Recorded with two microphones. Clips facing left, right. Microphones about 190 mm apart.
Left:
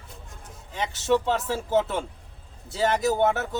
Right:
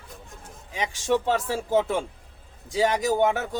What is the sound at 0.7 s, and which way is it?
Speech, 10° right (ahead or behind).